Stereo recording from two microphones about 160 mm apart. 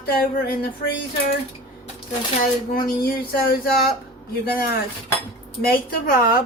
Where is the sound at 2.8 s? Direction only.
75° left (ahead or behind).